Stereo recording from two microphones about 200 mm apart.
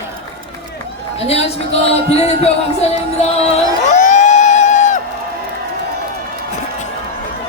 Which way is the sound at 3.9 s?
35° left (ahead or behind).